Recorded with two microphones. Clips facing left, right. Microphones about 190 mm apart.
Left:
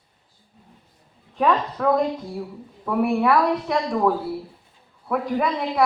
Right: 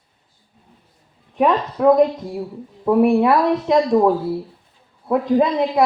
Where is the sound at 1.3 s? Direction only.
20° right (ahead or behind).